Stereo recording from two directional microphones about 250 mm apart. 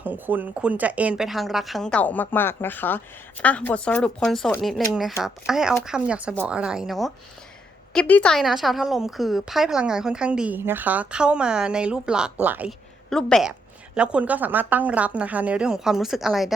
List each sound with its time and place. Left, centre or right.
0.0 s a woman's voice: centre